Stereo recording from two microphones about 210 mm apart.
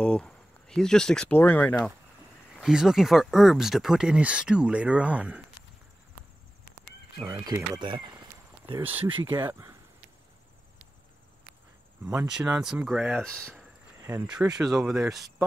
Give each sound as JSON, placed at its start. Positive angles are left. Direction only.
{"t": 0.0, "sound": "speech", "side_deg": 5}
{"t": 7.2, "sound": "speech", "side_deg": -15}
{"t": 8.8, "sound": "speech", "side_deg": -10}
{"t": 12.1, "sound": "speech", "side_deg": -5}
{"t": 13.5, "sound": "cricket", "side_deg": -10}
{"t": 14.7, "sound": "speech", "side_deg": -5}